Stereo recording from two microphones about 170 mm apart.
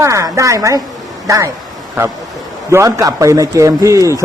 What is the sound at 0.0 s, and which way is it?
Speech, 20° right (ahead or behind).